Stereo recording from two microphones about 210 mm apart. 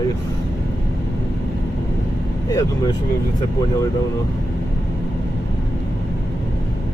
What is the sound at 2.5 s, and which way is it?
Speech, 20° left (ahead or behind).